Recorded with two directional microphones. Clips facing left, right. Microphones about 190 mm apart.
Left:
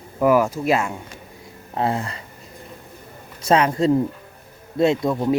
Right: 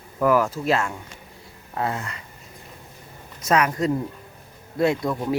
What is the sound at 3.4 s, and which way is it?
Speech, 30° left (ahead or behind).